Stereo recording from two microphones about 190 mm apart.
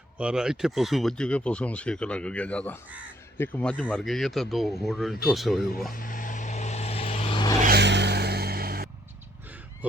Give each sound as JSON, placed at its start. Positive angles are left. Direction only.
{"t": 0.2, "sound": "speech", "side_deg": -5}
{"t": 5.9, "sound": "vehicle", "side_deg": 45}
{"t": 7.7, "sound": "vehicle", "side_deg": -65}